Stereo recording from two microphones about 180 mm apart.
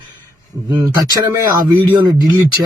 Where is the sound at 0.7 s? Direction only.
20° right (ahead or behind).